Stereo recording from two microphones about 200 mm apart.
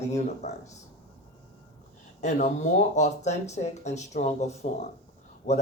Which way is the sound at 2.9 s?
35° left (ahead or behind).